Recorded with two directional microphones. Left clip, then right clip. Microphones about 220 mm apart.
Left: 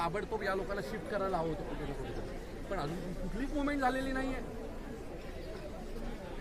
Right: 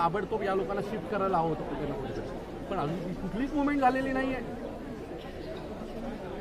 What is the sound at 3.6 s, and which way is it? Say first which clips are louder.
Speech: right 7 dB; 5° right (ahead or behind).